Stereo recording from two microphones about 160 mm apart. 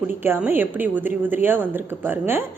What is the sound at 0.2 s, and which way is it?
A woman's voice, 15° right (ahead or behind).